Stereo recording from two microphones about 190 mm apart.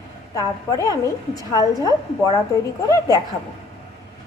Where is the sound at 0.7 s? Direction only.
15° left (ahead or behind).